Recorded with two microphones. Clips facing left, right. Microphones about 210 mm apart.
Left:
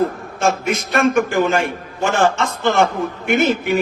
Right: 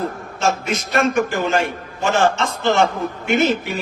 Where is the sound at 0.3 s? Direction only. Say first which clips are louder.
Left 3 dB; 55° left (ahead or behind).